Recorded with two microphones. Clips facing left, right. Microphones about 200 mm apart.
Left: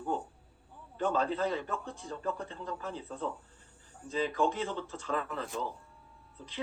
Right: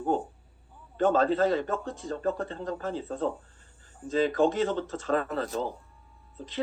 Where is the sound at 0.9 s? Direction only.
90° right.